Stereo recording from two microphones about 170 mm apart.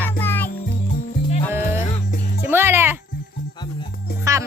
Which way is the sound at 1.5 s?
15° right (ahead or behind).